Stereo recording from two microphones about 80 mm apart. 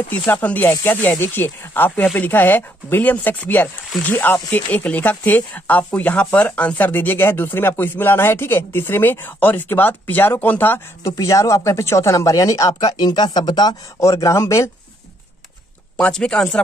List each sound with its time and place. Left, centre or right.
0.3 s speech: left
11.1 s speech: left
13.0 s speech: left
13.9 s speech: left
16.0 s speech: centre